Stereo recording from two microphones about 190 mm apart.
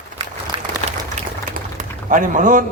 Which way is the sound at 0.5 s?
25° right (ahead or behind).